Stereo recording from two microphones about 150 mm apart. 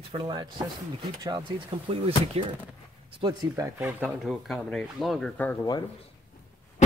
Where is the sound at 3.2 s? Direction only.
25° right (ahead or behind).